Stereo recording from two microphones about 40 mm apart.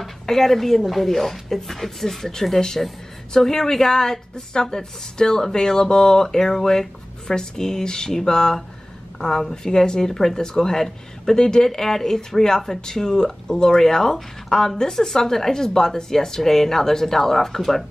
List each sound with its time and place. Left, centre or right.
0.0 s speech: centre